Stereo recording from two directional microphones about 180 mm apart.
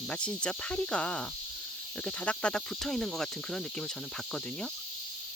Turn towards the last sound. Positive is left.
turn(degrees=5)  # may be behind; listen again after turning